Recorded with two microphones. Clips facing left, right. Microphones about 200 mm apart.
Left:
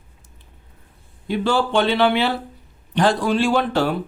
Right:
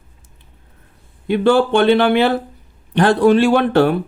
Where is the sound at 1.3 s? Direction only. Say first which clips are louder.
Right 6 dB; 55° right (ahead or behind).